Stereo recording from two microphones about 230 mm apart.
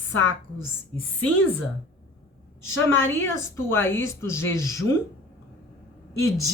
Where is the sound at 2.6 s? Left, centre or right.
Centre.